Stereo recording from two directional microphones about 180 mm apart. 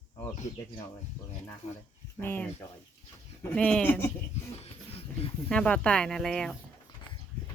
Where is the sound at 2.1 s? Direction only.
10° left (ahead or behind).